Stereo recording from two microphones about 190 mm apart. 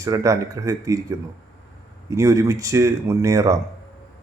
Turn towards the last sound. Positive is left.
turn(degrees=-15)  # may be behind; listen again after turning